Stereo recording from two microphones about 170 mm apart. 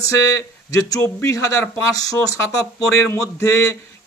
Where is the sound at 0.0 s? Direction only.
20° left (ahead or behind).